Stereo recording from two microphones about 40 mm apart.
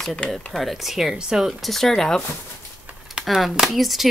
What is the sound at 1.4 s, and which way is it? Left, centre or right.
Speech, centre.